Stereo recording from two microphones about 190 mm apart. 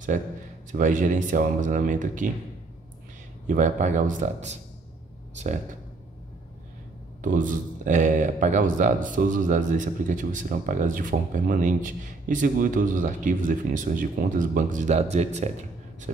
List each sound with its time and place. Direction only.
0.7 s speech: 45° right (ahead or behind)
3.4 s speech: 40° right (ahead or behind)
7.2 s speech: 45° right (ahead or behind)